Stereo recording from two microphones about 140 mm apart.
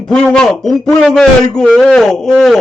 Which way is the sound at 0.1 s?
5° left (ahead or behind).